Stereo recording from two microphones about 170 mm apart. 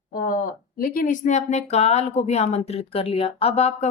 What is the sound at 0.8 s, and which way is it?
A woman's voice, 60° left (ahead or behind).